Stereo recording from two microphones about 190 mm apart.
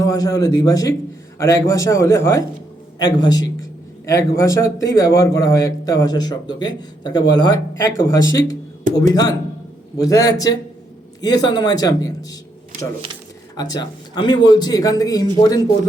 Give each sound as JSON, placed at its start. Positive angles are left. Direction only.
{"t": 0.0, "sound": "a man's voice", "side_deg": 20}
{"t": 13.6, "sound": "a man's voice", "side_deg": 20}